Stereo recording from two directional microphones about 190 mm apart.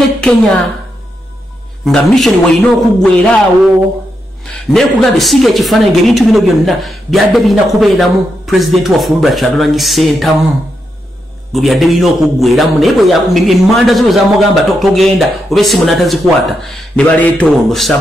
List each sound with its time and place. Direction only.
0.2 s a man's voice: 5° left (ahead or behind)
1.9 s a man's voice: centre (ahead or behind)
4.7 s a man's voice: centre (ahead or behind)
11.5 s a man's voice: centre (ahead or behind)